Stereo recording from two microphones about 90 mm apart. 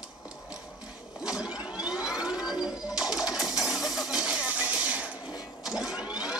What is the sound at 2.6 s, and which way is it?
Music, 5° right (ahead or behind).